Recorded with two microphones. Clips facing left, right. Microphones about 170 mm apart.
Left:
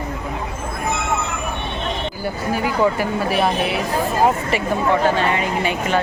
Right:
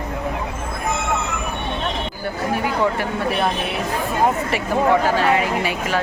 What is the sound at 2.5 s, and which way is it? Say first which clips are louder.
Speech: left 2 dB; centre (ahead or behind).